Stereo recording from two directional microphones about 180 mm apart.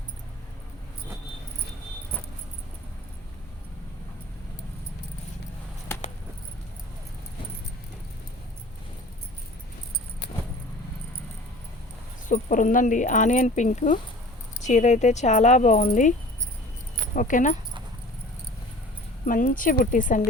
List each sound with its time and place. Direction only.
12.3 s speech: 45° left (ahead or behind)
17.2 s speech: 45° left (ahead or behind)
19.2 s speech: 50° left (ahead or behind)